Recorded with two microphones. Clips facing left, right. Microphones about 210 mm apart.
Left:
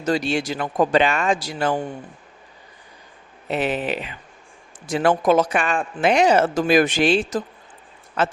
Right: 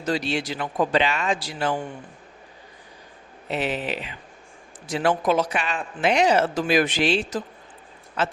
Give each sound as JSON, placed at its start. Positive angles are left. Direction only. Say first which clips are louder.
{"t": 0.0, "sound": "speech", "louder": "left 4 dB", "side_deg": 45}
{"t": 3.5, "sound": "speech", "louder": "left 4 dB", "side_deg": 50}